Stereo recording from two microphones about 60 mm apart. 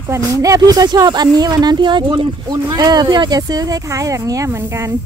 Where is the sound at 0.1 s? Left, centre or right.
Right.